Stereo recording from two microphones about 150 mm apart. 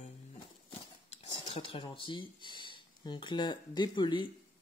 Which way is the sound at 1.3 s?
35° left (ahead or behind).